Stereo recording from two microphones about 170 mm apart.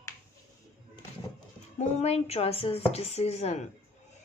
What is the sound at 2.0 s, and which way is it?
Speech, 40° left (ahead or behind).